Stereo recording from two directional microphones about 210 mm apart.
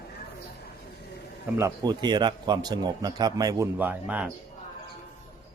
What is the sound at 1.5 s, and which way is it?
Speech, 15° right (ahead or behind).